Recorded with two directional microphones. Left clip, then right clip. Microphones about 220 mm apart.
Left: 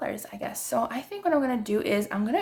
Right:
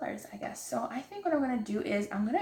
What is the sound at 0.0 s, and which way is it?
Speech, 45° left (ahead or behind).